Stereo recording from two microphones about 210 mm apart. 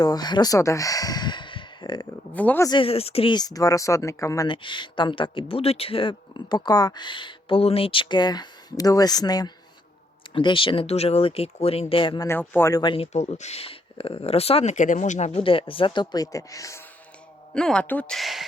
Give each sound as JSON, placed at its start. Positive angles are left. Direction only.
{"t": 0.0, "sound": "speech", "side_deg": 20}
{"t": 2.3, "sound": "speech", "side_deg": 10}
{"t": 2.6, "sound": "speech", "side_deg": 25}
{"t": 17.5, "sound": "speech", "side_deg": 5}